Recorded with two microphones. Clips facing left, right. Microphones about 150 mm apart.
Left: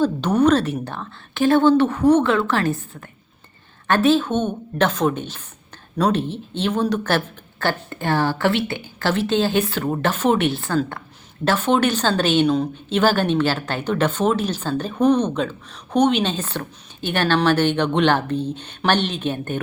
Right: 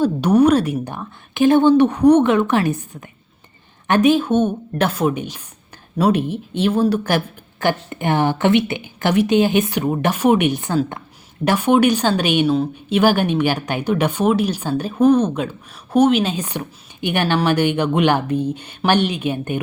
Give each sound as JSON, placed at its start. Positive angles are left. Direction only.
{"t": 0.0, "sound": "a woman's voice", "side_deg": -10}